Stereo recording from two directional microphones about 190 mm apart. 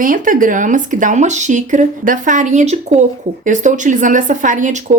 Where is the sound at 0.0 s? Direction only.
45° right (ahead or behind).